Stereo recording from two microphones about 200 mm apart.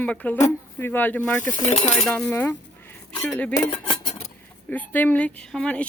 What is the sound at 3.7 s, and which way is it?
Cutlery, 25° left (ahead or behind).